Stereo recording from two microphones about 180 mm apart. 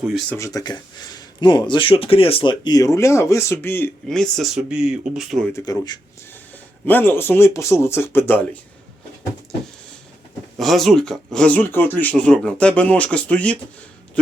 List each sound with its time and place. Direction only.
0.0 s speech: centre (ahead or behind)
0.3 s speech: 20° left (ahead or behind); by 5.5 s centre (ahead or behind)
5.5 s speech: 20° left (ahead or behind)
6.8 s speech: 10° left (ahead or behind)
10.6 s speech: centre (ahead or behind)